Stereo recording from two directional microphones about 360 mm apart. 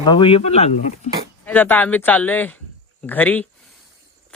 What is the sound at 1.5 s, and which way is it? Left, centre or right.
A child's voice, centre.